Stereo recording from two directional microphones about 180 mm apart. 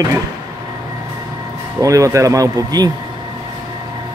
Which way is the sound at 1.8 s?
20° right (ahead or behind).